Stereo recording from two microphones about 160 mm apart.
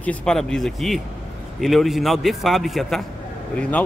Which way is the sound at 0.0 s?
5° left (ahead or behind).